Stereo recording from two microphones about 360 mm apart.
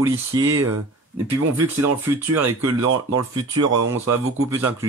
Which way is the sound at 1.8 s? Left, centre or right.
Centre.